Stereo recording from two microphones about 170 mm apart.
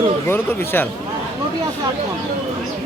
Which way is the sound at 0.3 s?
15° left (ahead or behind).